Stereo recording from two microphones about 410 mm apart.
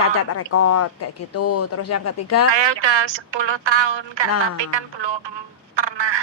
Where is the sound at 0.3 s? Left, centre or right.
Left.